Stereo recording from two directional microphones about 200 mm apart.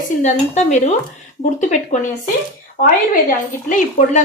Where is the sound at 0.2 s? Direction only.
35° left (ahead or behind).